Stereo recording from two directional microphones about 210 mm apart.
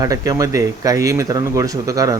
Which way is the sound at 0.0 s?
15° right (ahead or behind).